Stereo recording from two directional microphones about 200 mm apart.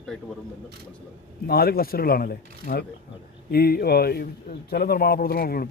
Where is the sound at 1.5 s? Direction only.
50° left (ahead or behind).